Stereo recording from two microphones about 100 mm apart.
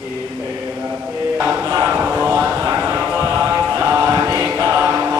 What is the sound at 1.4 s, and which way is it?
Music, 20° right (ahead or behind).